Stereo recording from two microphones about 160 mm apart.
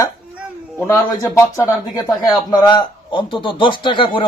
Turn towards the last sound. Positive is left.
turn(degrees=30)  # may be behind; listen again after turning